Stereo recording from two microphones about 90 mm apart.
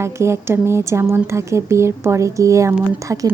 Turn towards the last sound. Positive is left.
turn(degrees=-35)  # may be behind; listen again after turning